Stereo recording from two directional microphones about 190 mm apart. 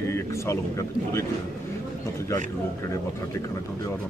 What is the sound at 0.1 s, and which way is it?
Speech, 15° left (ahead or behind).